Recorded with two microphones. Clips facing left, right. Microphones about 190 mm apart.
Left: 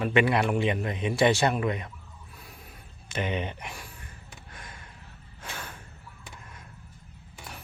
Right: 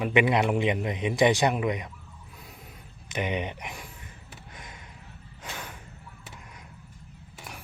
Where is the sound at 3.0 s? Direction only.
15° right (ahead or behind).